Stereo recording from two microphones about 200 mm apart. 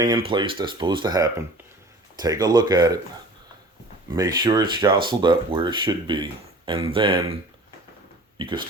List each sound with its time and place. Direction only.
0.0 s speech: 25° right (ahead or behind)
4.1 s speech: 20° right (ahead or behind)
8.4 s speech: 25° right (ahead or behind)